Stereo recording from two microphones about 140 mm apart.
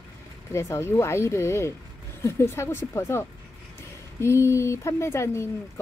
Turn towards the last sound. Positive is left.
turn(degrees=20)  # may be behind; listen again after turning